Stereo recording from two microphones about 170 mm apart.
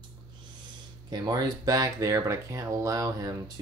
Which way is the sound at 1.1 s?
25° right (ahead or behind).